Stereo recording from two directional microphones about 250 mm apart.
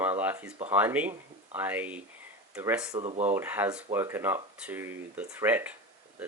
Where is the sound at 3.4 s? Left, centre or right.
Centre.